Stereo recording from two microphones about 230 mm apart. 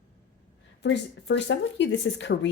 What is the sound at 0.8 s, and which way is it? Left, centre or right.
Speech, left.